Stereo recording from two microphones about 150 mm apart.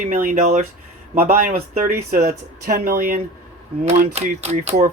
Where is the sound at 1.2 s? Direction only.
75° right (ahead or behind).